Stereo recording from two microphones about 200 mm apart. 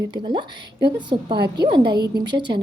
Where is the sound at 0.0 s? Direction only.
20° right (ahead or behind).